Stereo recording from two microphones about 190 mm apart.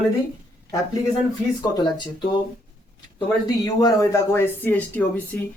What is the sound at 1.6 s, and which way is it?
Speech, 20° left (ahead or behind).